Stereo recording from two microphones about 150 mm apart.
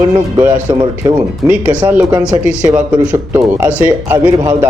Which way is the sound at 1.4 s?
10° right (ahead or behind).